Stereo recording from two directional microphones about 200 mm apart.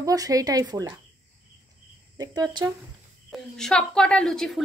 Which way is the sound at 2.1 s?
20° right (ahead or behind).